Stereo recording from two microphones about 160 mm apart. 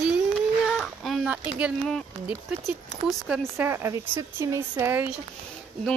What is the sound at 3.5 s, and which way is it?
Speech, 15° right (ahead or behind).